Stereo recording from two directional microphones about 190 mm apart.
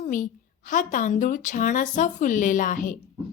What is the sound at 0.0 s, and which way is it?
A woman's voice, 45° left (ahead or behind).